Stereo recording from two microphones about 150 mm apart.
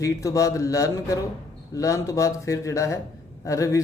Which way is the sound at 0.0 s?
20° left (ahead or behind).